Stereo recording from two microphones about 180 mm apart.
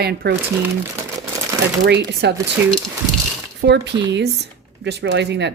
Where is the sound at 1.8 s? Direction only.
70° right (ahead or behind).